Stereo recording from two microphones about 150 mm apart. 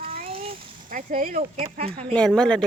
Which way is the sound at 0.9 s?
65° right (ahead or behind).